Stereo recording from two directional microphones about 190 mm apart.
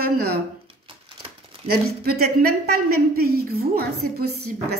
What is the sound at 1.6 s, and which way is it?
A woman's voice, 55° right (ahead or behind).